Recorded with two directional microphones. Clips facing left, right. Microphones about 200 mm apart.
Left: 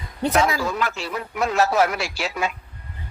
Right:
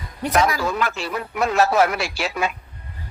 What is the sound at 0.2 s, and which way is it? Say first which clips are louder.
Speech: even; 25° left (ahead or behind).